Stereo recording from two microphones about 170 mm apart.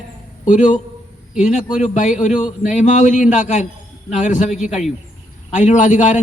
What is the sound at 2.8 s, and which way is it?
A man's voice, 50° left (ahead or behind).